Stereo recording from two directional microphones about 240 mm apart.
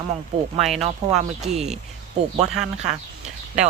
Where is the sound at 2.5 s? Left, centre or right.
Centre.